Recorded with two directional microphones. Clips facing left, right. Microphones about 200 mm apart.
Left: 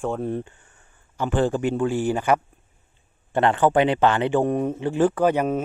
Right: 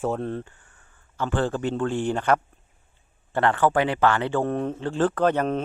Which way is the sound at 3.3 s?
20° left (ahead or behind).